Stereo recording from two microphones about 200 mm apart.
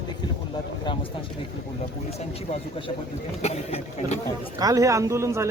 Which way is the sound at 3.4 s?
30° left (ahead or behind).